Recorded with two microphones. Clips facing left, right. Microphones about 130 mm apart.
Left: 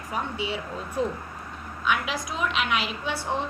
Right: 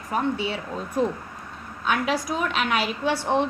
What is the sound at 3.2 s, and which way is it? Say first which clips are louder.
Speech: right 6 dB; 75° right (ahead or behind).